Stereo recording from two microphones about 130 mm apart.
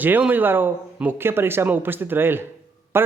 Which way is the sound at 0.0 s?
15° right (ahead or behind).